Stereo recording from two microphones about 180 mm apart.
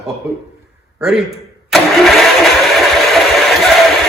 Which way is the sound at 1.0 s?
5° right (ahead or behind).